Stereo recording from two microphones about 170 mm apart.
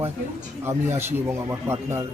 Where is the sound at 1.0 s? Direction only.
15° right (ahead or behind).